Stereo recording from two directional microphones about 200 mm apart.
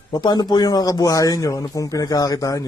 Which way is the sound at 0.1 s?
20° left (ahead or behind).